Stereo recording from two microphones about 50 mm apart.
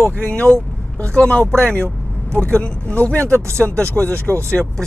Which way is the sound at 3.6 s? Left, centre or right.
Left.